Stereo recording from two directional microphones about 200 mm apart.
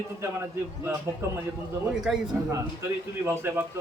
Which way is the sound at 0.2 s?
10° right (ahead or behind).